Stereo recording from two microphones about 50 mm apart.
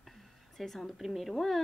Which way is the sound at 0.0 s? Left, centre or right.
Centre.